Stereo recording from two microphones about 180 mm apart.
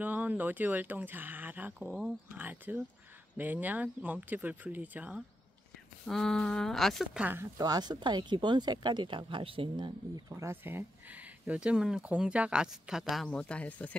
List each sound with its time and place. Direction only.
0.0 s speech: 10° right (ahead or behind)
6.0 s speech: 5° left (ahead or behind)